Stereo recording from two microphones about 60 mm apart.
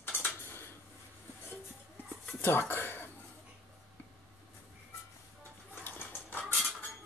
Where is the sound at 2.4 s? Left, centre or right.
Left.